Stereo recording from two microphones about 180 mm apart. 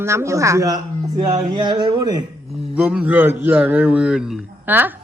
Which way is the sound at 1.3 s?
25° right (ahead or behind).